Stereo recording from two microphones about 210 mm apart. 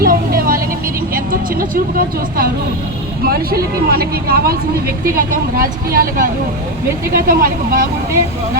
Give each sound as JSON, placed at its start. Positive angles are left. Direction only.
{"t": 0.0, "sound": "vehicle", "side_deg": -45}
{"t": 1.1, "sound": "speech", "side_deg": -45}